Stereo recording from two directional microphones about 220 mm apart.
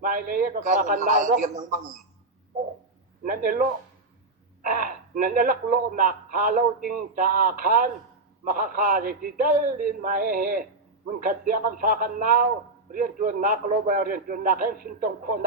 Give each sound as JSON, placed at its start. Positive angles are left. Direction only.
{"t": 0.0, "sound": "speech", "side_deg": -40}
{"t": 3.2, "sound": "speech", "side_deg": -40}